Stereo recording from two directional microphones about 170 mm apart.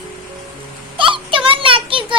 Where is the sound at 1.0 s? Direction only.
30° right (ahead or behind).